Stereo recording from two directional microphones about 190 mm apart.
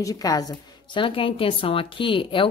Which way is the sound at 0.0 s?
20° left (ahead or behind).